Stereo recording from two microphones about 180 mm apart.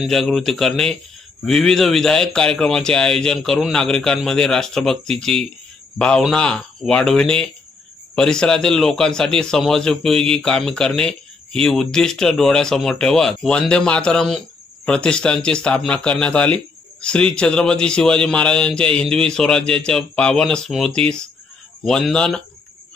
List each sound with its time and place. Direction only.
0.0 s a man's voice: centre (ahead or behind)